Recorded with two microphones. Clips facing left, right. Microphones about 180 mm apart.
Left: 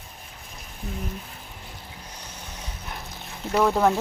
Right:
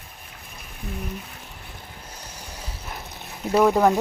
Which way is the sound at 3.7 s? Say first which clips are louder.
Right 2 dB; 15° right (ahead or behind).